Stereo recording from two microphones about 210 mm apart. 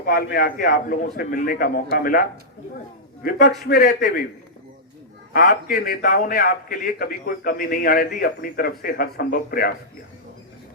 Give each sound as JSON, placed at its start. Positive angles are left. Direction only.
{"t": 0.0, "sound": "a man's voice", "side_deg": 45}
{"t": 3.2, "sound": "a man's voice", "side_deg": 45}
{"t": 5.3, "sound": "a man's voice", "side_deg": 45}